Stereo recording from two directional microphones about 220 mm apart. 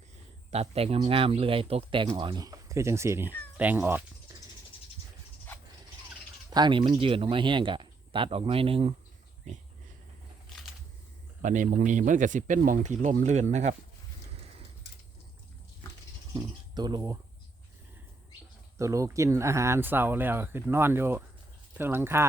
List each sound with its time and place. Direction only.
0.5 s speech: 30° right (ahead or behind); by 4.4 s 10° right (ahead or behind)
6.5 s speech: 20° right (ahead or behind)
11.4 s speech: 35° right (ahead or behind)
16.3 s speech: 20° right (ahead or behind)
18.8 s speech: 15° right (ahead or behind)